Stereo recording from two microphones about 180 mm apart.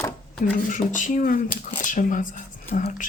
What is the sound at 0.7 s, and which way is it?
Speech, 45° left (ahead or behind).